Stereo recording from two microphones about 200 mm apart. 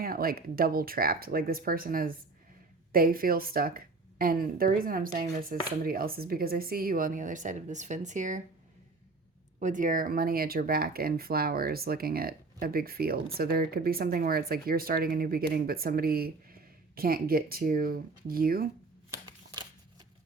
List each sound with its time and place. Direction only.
0.0 s speech: 45° right (ahead or behind)
9.6 s speech: 40° right (ahead or behind)